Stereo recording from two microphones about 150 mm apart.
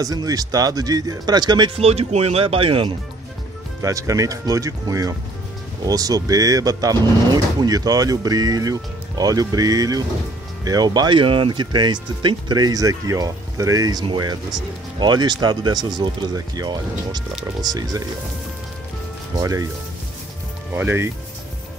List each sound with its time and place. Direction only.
0.0 s speech: 25° right (ahead or behind)
1.8 s speech: 45° right (ahead or behind)
3.8 s speech: 20° right (ahead or behind)
19.3 s speech: 20° right (ahead or behind)
20.7 s speech: 15° right (ahead or behind)